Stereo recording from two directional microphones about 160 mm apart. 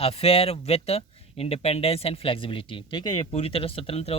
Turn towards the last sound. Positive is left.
turn(degrees=40)  # may be behind; listen again after turning